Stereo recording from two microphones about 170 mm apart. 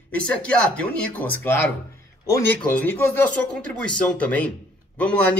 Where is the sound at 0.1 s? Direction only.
10° left (ahead or behind).